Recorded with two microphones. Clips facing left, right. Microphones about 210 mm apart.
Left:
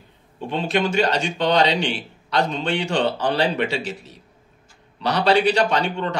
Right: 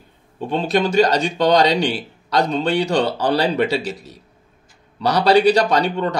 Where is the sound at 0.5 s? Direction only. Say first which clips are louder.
Right 3 dB; 40° right (ahead or behind).